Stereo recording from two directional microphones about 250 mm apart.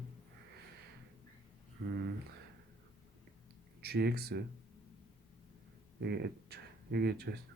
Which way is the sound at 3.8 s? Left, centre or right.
Right.